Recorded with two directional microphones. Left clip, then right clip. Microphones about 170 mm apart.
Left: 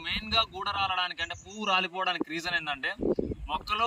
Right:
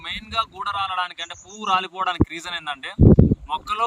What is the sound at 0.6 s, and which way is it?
A man's voice, 15° right (ahead or behind).